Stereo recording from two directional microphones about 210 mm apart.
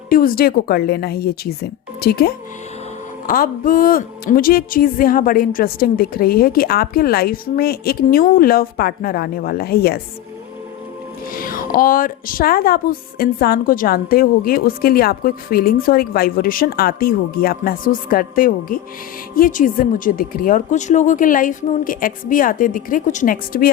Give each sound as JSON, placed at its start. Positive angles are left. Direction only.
{"t": 0.1, "sound": "speech", "side_deg": 45}
{"t": 11.3, "sound": "speech", "side_deg": 40}